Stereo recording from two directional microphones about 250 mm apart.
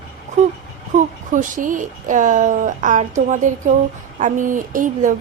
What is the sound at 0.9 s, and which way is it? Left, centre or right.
A woman's voice, right.